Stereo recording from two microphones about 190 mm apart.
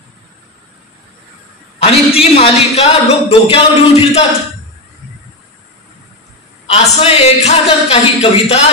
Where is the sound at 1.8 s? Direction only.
30° left (ahead or behind).